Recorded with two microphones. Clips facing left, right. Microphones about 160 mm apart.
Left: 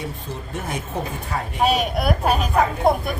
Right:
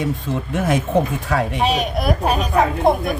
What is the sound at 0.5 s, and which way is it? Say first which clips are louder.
Speech: right 10 dB; 90° right.